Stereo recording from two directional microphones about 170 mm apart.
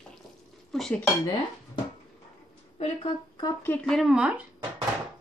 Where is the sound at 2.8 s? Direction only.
30° left (ahead or behind).